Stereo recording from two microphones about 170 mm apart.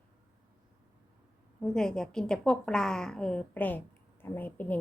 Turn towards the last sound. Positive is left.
turn(degrees=10)  # may be behind; listen again after turning